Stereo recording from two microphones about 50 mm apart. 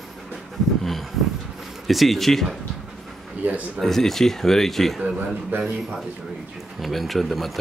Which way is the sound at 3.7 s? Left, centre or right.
Centre.